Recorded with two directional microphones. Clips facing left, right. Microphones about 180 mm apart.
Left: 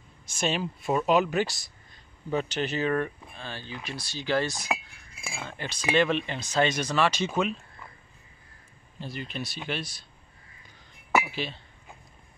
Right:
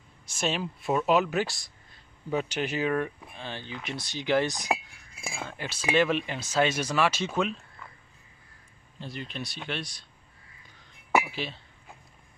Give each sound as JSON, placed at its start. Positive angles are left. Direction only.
{"t": 0.3, "sound": "speech", "side_deg": 0}
{"t": 3.3, "sound": "speech", "side_deg": -20}
{"t": 5.4, "sound": "speech", "side_deg": -5}
{"t": 9.0, "sound": "speech", "side_deg": 5}
{"t": 11.3, "sound": "speech", "side_deg": 0}